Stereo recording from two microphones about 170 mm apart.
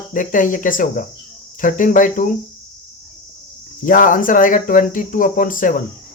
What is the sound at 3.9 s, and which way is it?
Speech, 55° left (ahead or behind).